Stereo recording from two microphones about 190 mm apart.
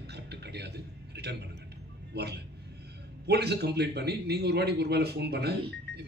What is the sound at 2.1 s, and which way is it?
A man's voice, 60° right (ahead or behind).